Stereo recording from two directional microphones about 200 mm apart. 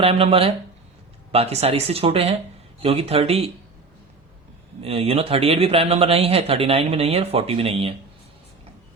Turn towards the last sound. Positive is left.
turn(degrees=-30)  # may be behind; listen again after turning